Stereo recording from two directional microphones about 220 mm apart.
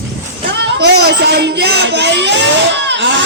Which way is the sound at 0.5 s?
50° right (ahead or behind).